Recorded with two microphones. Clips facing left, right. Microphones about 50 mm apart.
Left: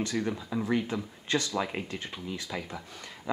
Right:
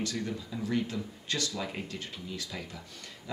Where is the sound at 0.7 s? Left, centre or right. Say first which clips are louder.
Left 2 dB; left.